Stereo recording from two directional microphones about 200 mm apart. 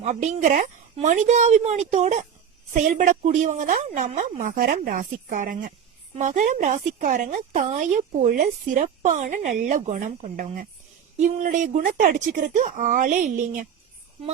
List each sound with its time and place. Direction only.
0.0 s a woman's voice: 35° right (ahead or behind)